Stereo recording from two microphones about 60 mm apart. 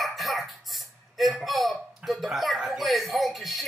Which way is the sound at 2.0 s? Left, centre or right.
Centre.